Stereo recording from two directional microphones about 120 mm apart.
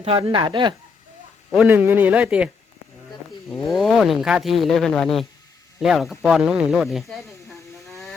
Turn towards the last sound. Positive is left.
turn(degrees=0)  # may be behind; listen again after turning